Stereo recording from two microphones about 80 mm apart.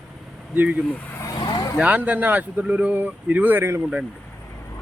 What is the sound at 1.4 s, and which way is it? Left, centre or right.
Vehicle, left.